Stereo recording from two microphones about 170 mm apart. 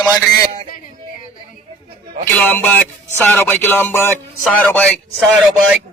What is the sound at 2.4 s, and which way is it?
Music, 10° left (ahead or behind).